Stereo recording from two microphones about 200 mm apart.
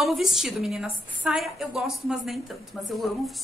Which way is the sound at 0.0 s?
Centre (ahead or behind).